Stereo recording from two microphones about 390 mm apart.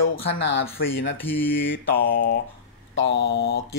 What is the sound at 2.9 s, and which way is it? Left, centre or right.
Mantra, left.